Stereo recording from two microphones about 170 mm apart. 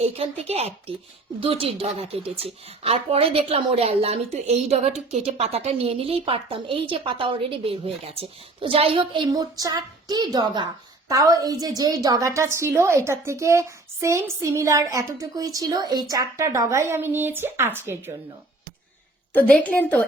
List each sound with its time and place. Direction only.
0.0 s a woman's voice: 35° right (ahead or behind); by 18.2 s 15° right (ahead or behind)
19.3 s a woman's voice: 10° left (ahead or behind)